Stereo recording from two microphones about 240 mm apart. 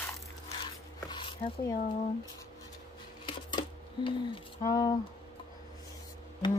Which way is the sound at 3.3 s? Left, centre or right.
Centre.